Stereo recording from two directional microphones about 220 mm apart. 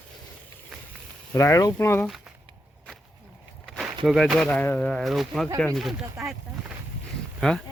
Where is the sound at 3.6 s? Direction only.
Centre (ahead or behind).